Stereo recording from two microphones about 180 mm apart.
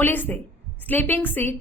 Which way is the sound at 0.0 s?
10° left (ahead or behind).